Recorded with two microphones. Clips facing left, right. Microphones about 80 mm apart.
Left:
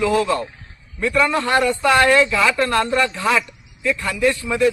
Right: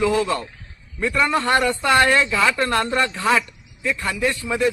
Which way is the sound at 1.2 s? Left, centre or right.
Right.